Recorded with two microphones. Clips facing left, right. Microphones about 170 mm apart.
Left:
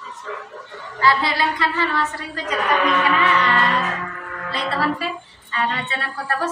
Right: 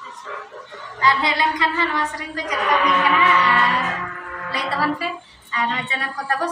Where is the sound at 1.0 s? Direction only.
20° right (ahead or behind).